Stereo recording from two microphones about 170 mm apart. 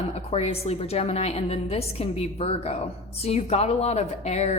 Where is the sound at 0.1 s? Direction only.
40° left (ahead or behind).